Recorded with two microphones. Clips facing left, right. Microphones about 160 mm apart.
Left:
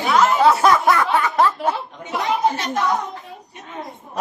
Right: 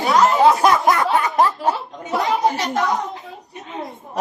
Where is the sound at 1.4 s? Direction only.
35° right (ahead or behind).